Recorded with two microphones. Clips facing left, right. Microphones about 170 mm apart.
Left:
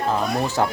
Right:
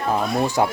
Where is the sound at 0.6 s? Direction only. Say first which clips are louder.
Right 1 dB; 15° right (ahead or behind).